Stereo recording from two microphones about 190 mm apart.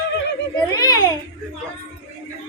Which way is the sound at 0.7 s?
20° left (ahead or behind).